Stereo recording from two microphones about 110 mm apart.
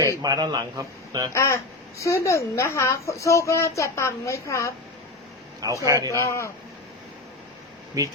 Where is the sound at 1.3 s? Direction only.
25° left (ahead or behind).